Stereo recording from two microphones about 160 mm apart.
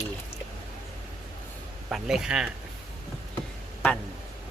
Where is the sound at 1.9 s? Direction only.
5° right (ahead or behind).